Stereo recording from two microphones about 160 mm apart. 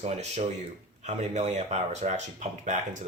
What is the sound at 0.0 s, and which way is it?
Speech, 45° right (ahead or behind).